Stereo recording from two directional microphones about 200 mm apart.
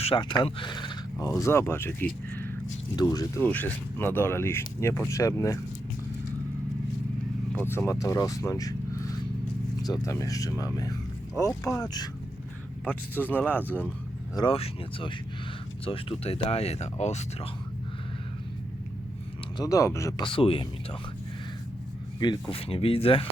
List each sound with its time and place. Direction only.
0.0 s speech: 25° left (ahead or behind)
7.5 s speech: 10° left (ahead or behind)
14.3 s speech: 25° left (ahead or behind)
19.5 s speech: 15° left (ahead or behind)
22.2 s speech: 25° left (ahead or behind)